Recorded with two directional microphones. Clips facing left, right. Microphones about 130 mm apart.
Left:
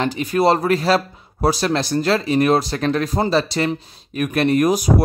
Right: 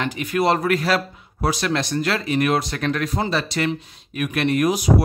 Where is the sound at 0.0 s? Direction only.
35° left (ahead or behind).